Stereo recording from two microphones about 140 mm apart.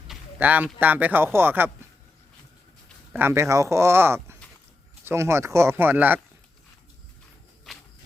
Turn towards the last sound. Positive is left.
turn(degrees=-15)  # may be behind; listen again after turning